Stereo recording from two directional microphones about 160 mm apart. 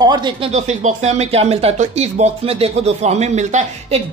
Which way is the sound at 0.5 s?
45° right (ahead or behind).